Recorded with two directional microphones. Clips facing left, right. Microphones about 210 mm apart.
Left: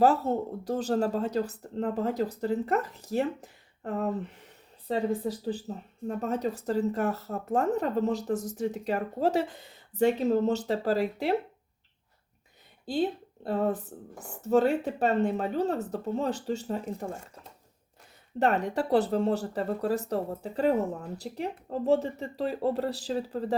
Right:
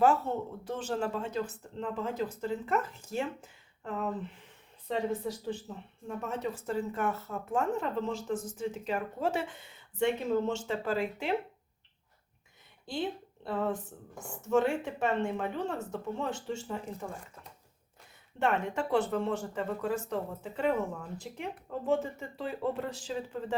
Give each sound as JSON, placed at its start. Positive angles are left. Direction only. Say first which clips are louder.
{"t": 0.0, "sound": "speech", "louder": "left 3 dB", "side_deg": 35}
{"t": 12.9, "sound": "speech", "louder": "left 6 dB", "side_deg": 40}
{"t": 18.3, "sound": "speech", "louder": "left 4 dB", "side_deg": 35}